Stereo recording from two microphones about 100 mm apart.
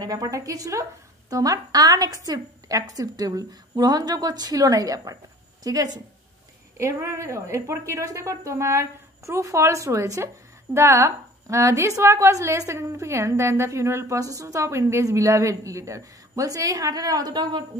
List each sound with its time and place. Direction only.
0.0 s a woman's voice: 40° right (ahead or behind)